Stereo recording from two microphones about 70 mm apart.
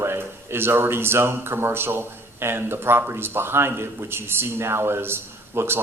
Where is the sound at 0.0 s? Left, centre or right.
Right.